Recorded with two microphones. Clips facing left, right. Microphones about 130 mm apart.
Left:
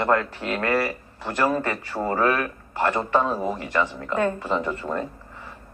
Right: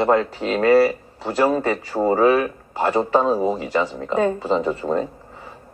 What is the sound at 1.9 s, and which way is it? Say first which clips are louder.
A man's voice: right 6 dB; 15° right (ahead or behind).